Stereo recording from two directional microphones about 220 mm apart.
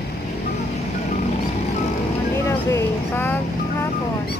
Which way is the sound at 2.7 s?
10° left (ahead or behind).